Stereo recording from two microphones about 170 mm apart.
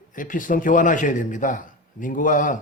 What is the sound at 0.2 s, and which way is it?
Speech, 50° left (ahead or behind).